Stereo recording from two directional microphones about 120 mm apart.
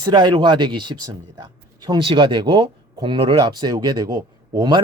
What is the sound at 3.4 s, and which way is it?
A man's voice, 35° right (ahead or behind).